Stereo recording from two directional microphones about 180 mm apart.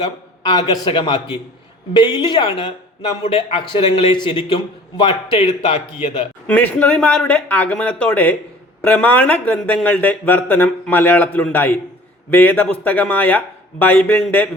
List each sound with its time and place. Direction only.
0.0 s speech: 25° left (ahead or behind)
6.5 s speech: 10° left (ahead or behind)